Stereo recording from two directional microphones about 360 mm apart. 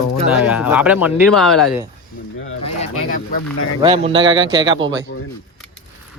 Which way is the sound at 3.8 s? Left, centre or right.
Centre.